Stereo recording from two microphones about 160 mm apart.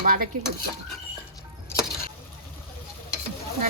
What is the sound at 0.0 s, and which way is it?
Cutlery, 60° right (ahead or behind).